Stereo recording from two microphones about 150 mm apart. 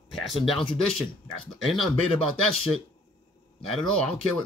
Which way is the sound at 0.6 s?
35° left (ahead or behind).